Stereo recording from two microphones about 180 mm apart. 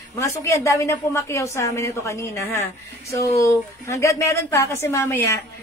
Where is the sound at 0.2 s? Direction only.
15° left (ahead or behind).